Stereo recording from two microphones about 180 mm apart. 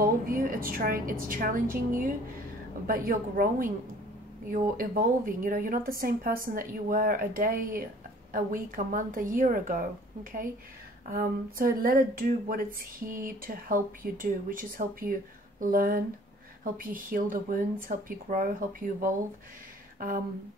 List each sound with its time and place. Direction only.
0.0 s a woman's voice: 55° right (ahead or behind)
11.1 s a woman's voice: 55° right (ahead or behind)